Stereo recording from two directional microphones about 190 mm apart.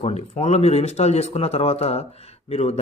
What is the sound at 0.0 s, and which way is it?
Speech, 35° left (ahead or behind).